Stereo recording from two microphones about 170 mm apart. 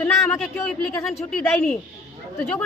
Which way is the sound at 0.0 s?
5° left (ahead or behind).